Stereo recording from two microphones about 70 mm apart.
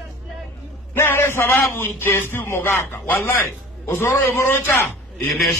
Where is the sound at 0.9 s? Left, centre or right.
Left.